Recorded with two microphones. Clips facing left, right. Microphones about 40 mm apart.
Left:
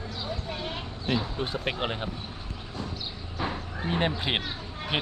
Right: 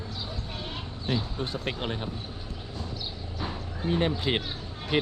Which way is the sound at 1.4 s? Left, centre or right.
Left.